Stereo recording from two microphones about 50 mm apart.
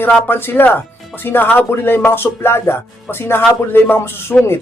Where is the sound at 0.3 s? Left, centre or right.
Left.